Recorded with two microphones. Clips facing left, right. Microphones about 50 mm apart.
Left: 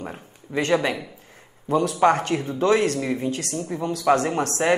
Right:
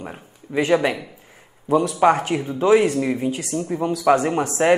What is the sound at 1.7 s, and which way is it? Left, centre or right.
Speech, centre.